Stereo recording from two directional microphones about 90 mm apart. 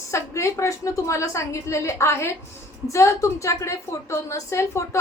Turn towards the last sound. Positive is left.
turn(degrees=35)  # may be behind; listen again after turning